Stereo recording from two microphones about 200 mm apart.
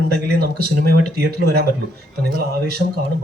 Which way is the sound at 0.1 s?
50° right (ahead or behind).